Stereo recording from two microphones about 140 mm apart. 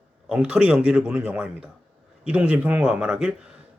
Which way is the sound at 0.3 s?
10° right (ahead or behind).